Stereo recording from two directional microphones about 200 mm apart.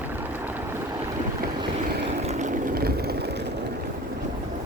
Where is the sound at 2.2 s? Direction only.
35° right (ahead or behind); by 3.5 s 55° right (ahead or behind).